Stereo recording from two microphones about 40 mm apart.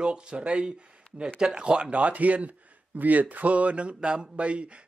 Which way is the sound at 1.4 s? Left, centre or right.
Centre.